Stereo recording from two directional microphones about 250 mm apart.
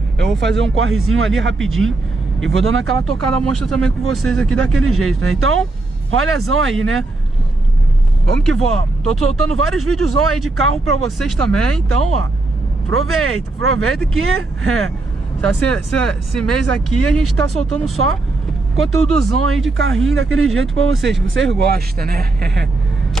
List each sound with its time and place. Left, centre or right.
0.4 s speech: right
4.1 s speech: centre
4.8 s speech: right
8.6 s speech: right
11.3 s speech: centre
11.9 s speech: right
15.6 s speech: right
19.8 s speech: right